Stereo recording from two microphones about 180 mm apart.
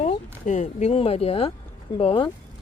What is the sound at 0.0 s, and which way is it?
Speech, 40° left (ahead or behind).